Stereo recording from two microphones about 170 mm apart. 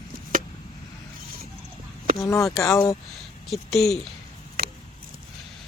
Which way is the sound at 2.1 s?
20° left (ahead or behind).